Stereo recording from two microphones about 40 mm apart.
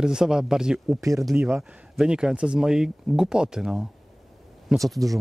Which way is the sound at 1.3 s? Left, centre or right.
Right.